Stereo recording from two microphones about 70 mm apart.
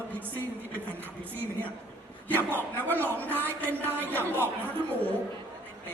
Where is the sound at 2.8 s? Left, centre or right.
Left.